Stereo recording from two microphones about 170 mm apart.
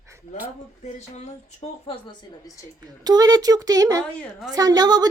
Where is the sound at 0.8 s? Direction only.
40° left (ahead or behind); by 2.6 s 20° left (ahead or behind).